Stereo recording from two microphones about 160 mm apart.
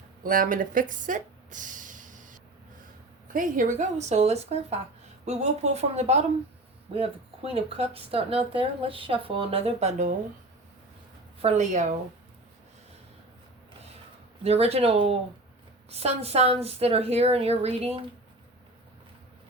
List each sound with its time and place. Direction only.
0.2 s a sound: 60° right (ahead or behind)
3.3 s a woman's voice: 55° right (ahead or behind)
11.3 s a woman's voice: 45° right (ahead or behind)
14.4 s speech: 40° right (ahead or behind)